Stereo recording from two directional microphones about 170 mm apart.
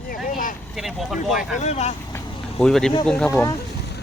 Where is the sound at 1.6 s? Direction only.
40° left (ahead or behind).